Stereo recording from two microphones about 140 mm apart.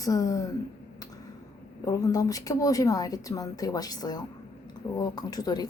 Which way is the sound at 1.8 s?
25° left (ahead or behind).